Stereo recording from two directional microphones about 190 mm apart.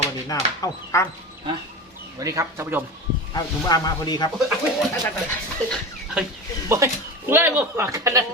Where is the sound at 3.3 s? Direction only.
20° left (ahead or behind).